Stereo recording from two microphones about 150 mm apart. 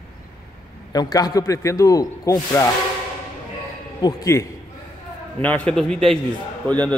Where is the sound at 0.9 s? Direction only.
25° left (ahead or behind).